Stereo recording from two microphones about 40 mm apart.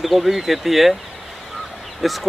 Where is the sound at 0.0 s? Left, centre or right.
Centre.